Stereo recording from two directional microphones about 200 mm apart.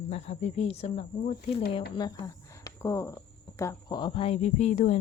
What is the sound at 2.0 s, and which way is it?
Speech, 20° left (ahead or behind).